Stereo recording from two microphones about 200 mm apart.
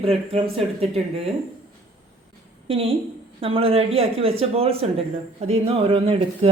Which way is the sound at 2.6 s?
30° right (ahead or behind).